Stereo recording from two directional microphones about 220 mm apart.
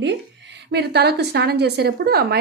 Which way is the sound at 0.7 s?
50° right (ahead or behind).